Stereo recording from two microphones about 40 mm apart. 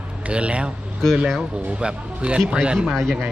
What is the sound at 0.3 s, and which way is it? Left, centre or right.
Speech, right.